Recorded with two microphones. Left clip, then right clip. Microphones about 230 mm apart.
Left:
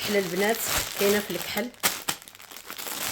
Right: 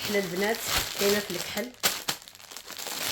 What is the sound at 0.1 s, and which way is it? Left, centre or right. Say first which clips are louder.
Speech: left 3 dB; left.